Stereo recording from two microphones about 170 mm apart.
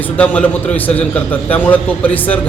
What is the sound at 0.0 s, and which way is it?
A man's voice, 10° left (ahead or behind).